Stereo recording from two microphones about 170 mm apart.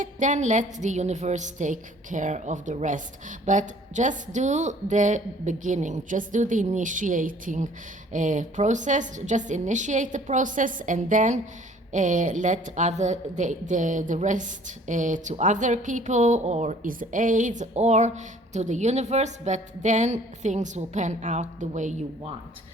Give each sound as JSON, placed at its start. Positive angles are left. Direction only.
{"t": 0.0, "sound": "a woman's voice", "side_deg": -45}